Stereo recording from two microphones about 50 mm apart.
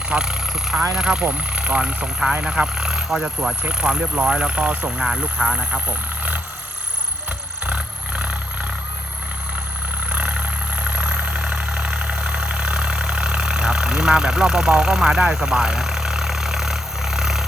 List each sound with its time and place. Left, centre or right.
0.1 s speech: centre
4.9 s speech: centre
7.6 s roar: right
10.1 s vehicle: right; by 17.4 s centre